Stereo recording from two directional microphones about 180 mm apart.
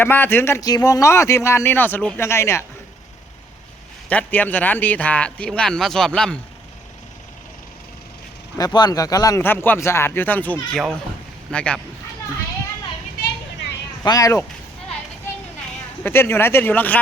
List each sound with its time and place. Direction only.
0.0 s speech: 10° left (ahead or behind)
4.1 s speech: 10° left (ahead or behind)
8.5 s speech: 20° left (ahead or behind); by 11.8 s 5° left (ahead or behind)
14.0 s speech: 20° left (ahead or behind)
16.0 s speech: 10° left (ahead or behind)